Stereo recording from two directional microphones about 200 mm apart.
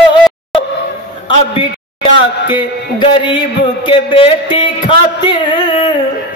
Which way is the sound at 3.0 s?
25° left (ahead or behind).